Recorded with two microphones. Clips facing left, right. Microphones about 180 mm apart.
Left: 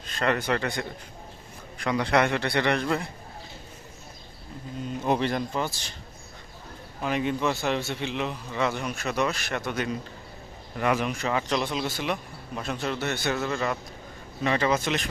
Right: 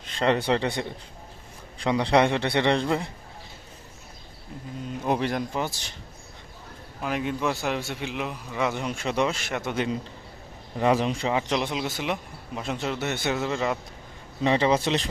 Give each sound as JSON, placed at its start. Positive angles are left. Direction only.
{"t": 0.2, "sound": "speech", "side_deg": -30}
{"t": 5.0, "sound": "a man's voice", "side_deg": -10}
{"t": 7.0, "sound": "a man's voice", "side_deg": 0}